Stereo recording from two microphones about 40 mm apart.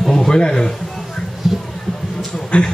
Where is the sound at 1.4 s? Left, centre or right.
Centre.